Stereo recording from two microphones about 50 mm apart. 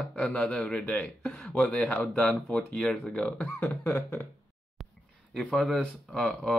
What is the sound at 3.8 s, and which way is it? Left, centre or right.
Speech, left.